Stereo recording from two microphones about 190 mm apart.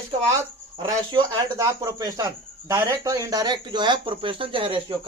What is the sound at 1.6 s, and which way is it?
Speech, 20° right (ahead or behind).